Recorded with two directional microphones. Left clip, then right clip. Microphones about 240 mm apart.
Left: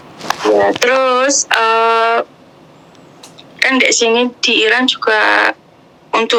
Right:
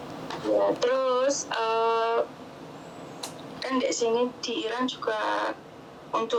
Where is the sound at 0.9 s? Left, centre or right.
Left.